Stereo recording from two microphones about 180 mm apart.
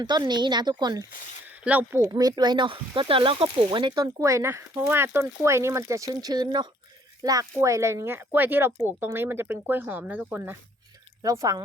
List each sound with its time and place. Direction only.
0.0 s speech: 25° right (ahead or behind)
1.6 s speech: 10° right (ahead or behind)